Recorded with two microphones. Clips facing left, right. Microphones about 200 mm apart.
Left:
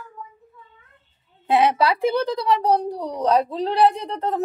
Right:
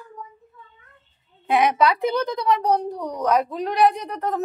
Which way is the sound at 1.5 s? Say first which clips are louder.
Left 1 dB; 30° left (ahead or behind).